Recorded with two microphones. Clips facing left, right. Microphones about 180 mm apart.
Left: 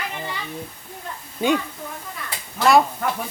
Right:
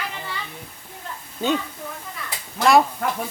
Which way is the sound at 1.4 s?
15° left (ahead or behind).